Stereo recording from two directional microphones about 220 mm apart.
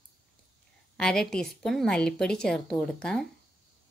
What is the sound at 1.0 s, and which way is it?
A woman's voice, 5° left (ahead or behind).